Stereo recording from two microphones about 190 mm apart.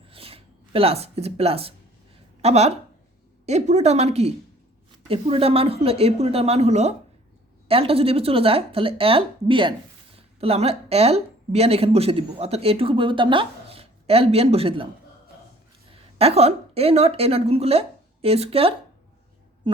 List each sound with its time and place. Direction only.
0.1 s a sound: 30° right (ahead or behind)
2.4 s speech: 35° right (ahead or behind)
15.9 s a woman's voice: 30° right (ahead or behind)